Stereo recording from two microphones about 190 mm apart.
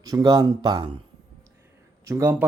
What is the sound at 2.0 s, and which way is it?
Speech, 15° right (ahead or behind).